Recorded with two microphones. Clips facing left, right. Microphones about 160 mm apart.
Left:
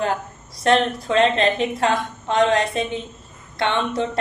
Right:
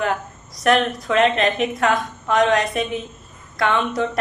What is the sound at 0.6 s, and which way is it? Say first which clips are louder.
A woman's voice: even; 30° left (ahead or behind).